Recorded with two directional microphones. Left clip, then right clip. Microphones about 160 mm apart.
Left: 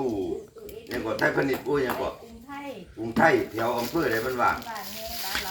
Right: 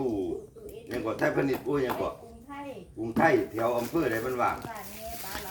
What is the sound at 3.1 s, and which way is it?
Speech, centre (ahead or behind).